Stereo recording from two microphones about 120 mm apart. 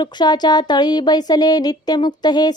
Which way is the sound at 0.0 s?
35° left (ahead or behind).